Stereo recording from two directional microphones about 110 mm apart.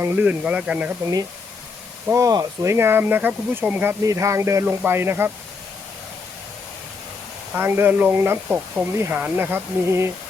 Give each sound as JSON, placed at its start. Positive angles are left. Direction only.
{"t": 0.2, "sound": "speech", "side_deg": -10}
{"t": 2.0, "sound": "speech", "side_deg": -30}
{"t": 4.0, "sound": "speech", "side_deg": -30}
{"t": 7.5, "sound": "speech", "side_deg": -20}